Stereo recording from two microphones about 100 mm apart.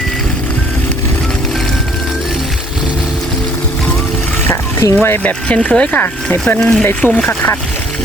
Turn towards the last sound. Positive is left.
turn(degrees=20)  # may be behind; listen again after turning